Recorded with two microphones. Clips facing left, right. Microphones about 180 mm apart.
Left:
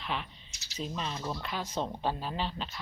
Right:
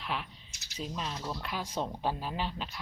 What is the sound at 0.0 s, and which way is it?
Bird, 5° right (ahead or behind).